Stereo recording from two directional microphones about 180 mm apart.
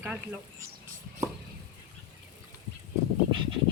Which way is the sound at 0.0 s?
10° right (ahead or behind).